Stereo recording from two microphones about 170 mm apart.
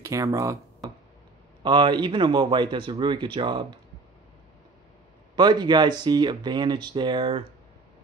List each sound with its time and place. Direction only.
0.0 s speech: 15° right (ahead or behind)
5.3 s speech: 25° right (ahead or behind)